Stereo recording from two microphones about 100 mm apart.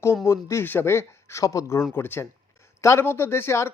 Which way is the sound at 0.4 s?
25° left (ahead or behind).